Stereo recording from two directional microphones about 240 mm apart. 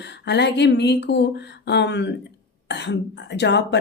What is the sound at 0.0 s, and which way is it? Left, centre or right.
Speech, left.